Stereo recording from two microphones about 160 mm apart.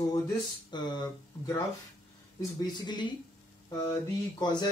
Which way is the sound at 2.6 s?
30° left (ahead or behind).